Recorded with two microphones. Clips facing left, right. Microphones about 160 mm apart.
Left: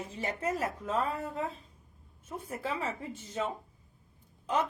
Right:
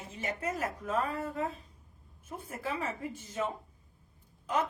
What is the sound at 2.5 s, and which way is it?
Speech, 30° left (ahead or behind).